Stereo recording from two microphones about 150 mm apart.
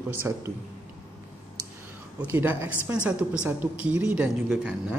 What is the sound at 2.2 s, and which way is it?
A woman's voice, 15° right (ahead or behind).